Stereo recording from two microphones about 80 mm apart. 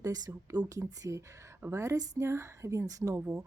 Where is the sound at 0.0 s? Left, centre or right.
Right.